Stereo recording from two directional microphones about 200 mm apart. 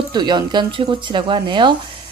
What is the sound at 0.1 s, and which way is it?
A woman's voice, 20° right (ahead or behind).